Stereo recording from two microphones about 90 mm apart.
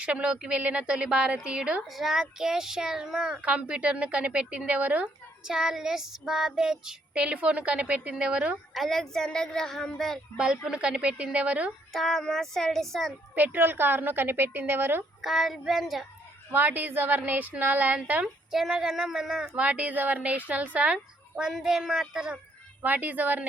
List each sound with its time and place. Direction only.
0.0 s a woman's voice: 10° right (ahead or behind)
8.7 s a woman's voice: centre (ahead or behind)
10.3 s speech: 10° right (ahead or behind)
11.9 s a woman's voice: 5° left (ahead or behind)
13.3 s a woman's voice: 20° right (ahead or behind)
15.2 s a woman's voice: centre (ahead or behind)
16.5 s a woman's voice: 20° right (ahead or behind)
18.5 s speech: 5° right (ahead or behind)
22.8 s a woman's voice: 20° right (ahead or behind)